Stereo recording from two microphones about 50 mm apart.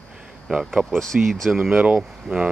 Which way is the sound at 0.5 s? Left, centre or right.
Right.